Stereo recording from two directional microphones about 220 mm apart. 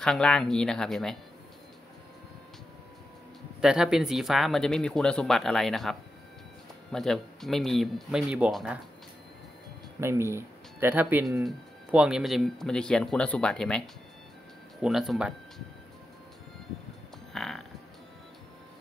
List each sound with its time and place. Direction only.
0.0 s speech: 5° left (ahead or behind)
3.6 s speech: 5° right (ahead or behind)
9.9 s speech: 10° right (ahead or behind)
17.3 s music: centre (ahead or behind)